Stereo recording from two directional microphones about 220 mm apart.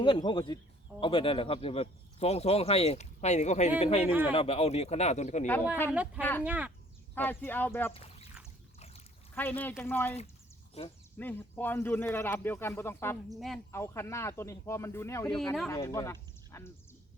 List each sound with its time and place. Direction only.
0.0 s speech: 20° left (ahead or behind)
4.0 s speech: 10° right (ahead or behind)
4.3 s speech: 25° left (ahead or behind)
5.9 s speech: 5° right (ahead or behind)
7.2 s speech: 10° left (ahead or behind)
7.9 s duck: 25° left (ahead or behind)
9.3 s speech: 10° left (ahead or behind)
10.8 s speech: 25° left (ahead or behind)
11.2 s speech: 10° left (ahead or behind)
13.3 s speech: centre (ahead or behind)
13.7 s speech: 10° left (ahead or behind)